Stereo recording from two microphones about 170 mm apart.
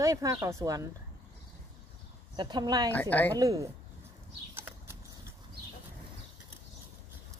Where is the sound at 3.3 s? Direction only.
20° right (ahead or behind).